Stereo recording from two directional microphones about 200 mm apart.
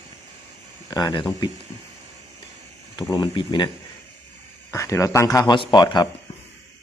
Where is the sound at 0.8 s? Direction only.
20° left (ahead or behind).